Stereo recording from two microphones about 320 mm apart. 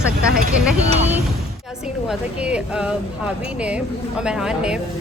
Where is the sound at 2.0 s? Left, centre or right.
Centre.